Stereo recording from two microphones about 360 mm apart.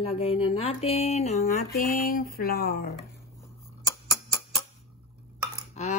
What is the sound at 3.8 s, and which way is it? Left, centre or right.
Music, centre.